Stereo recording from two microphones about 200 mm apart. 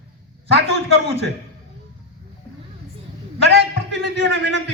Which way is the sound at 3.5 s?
60° right (ahead or behind).